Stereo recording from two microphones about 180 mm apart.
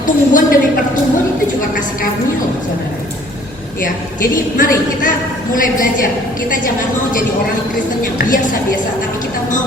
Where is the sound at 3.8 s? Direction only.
50° left (ahead or behind).